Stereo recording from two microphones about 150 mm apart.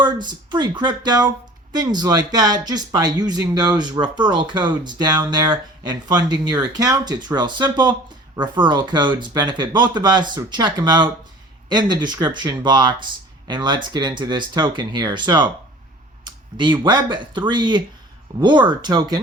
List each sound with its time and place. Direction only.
0.3 s speech: 30° right (ahead or behind)
16.2 s a sound: 30° right (ahead or behind)
16.8 s speech: 30° right (ahead or behind)